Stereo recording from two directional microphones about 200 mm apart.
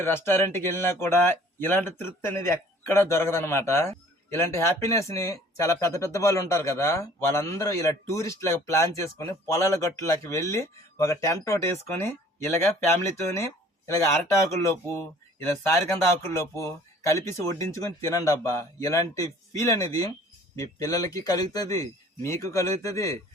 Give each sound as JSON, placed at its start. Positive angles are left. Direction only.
{"t": 0.0, "sound": "speech", "side_deg": 10}
{"t": 15.4, "sound": "speech", "side_deg": 15}